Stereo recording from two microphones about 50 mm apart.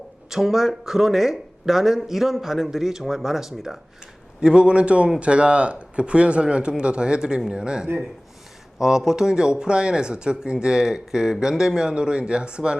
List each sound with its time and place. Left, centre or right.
0.3 s speech: centre